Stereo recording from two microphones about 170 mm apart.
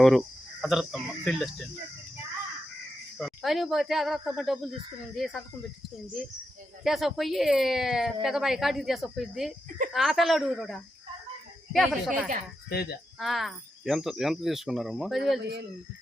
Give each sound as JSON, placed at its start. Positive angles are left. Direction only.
{"t": 0.0, "sound": "speech", "side_deg": 0}
{"t": 3.2, "sound": "speech", "side_deg": 0}
{"t": 12.7, "sound": "speech", "side_deg": 70}
{"t": 13.1, "sound": "speech", "side_deg": 0}